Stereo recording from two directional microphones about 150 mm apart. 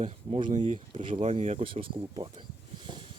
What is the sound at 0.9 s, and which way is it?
Speech, 35° right (ahead or behind).